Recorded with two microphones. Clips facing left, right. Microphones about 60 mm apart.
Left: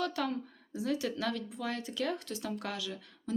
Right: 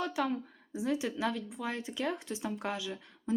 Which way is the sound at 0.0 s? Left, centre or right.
Centre.